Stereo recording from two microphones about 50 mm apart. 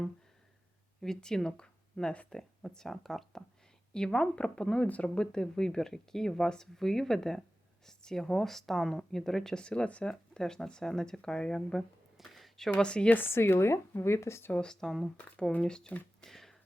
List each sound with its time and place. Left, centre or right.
1.0 s speech: centre
3.9 s speech: centre
9.6 s speech: left
12.1 s a sound: centre
12.8 s a woman's voice: centre
13.2 s speech: left
14.5 s speech: centre
16.2 s a sound: centre